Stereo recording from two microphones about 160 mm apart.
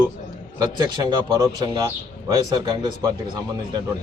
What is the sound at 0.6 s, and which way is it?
Speech, 25° right (ahead or behind).